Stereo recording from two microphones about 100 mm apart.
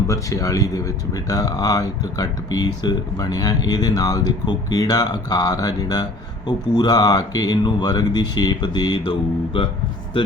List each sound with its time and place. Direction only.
0.1 s speech: 35° left (ahead or behind)
9.5 s speech: 65° left (ahead or behind)